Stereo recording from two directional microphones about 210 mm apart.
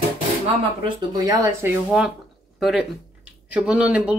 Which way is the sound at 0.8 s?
20° right (ahead or behind).